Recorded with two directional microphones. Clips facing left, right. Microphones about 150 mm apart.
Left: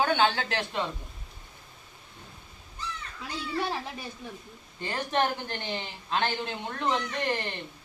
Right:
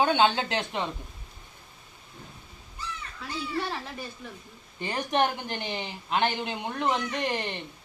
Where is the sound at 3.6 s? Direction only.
15° left (ahead or behind).